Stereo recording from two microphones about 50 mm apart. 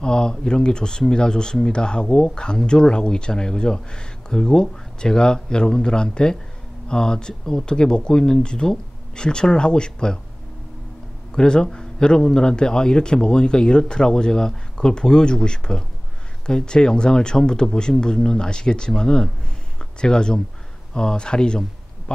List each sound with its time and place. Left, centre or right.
0.0 s speech: centre
11.3 s a man's voice: centre